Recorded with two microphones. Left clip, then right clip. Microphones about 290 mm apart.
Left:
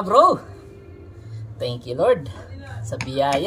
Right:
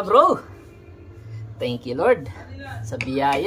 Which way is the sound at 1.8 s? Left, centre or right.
Centre.